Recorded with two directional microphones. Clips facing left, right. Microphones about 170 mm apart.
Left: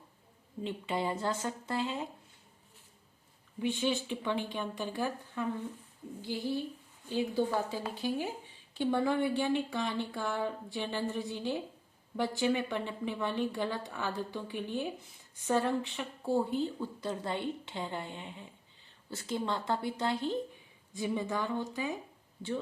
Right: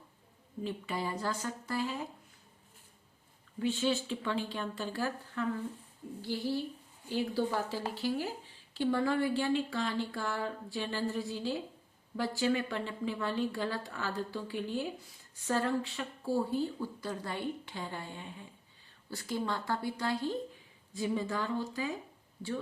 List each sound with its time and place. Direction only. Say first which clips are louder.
0.6 s speech: left 2 dB; 25° left (ahead or behind)
3.6 s speech: right 1 dB; 15° left (ahead or behind)